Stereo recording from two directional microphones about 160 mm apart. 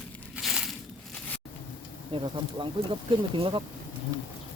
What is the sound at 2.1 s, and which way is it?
Speech, 30° right (ahead or behind).